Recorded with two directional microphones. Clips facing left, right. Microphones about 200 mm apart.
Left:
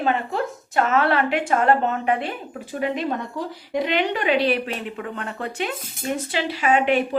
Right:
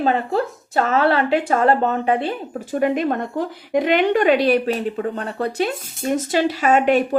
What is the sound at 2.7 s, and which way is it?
A woman's voice, 50° right (ahead or behind).